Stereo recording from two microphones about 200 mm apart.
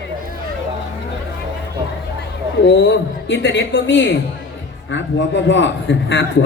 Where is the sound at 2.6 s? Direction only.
65° left (ahead or behind).